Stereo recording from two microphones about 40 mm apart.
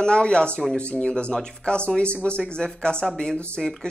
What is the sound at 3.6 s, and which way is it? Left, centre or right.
Speech, centre.